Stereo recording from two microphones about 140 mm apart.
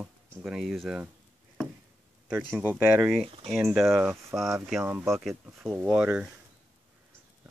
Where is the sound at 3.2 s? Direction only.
40° right (ahead or behind).